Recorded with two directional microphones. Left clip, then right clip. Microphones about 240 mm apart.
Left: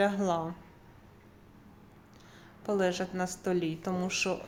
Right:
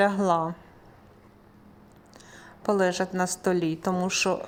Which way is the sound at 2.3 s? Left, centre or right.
Right.